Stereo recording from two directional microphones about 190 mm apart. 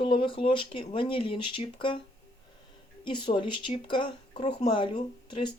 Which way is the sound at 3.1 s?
25° left (ahead or behind).